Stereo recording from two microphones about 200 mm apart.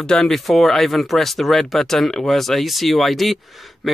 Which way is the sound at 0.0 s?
5° left (ahead or behind).